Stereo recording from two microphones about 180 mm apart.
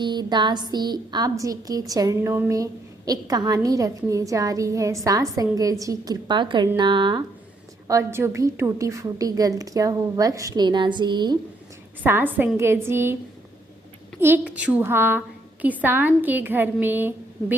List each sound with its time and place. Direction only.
0.0 s a woman's voice: 25° right (ahead or behind)
12.0 s a woman's voice: 10° right (ahead or behind)
14.2 s a woman's voice: 10° right (ahead or behind)